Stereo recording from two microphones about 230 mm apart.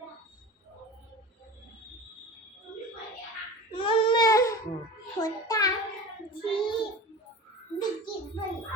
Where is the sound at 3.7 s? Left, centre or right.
Left.